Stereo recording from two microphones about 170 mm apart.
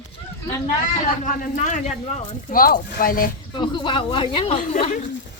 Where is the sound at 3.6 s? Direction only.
30° left (ahead or behind).